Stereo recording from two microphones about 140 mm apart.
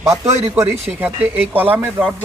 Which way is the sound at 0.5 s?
15° right (ahead or behind).